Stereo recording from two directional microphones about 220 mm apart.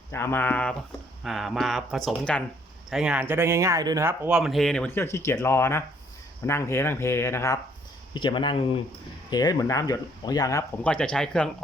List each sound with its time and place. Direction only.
0.1 s speech: 10° left (ahead or behind)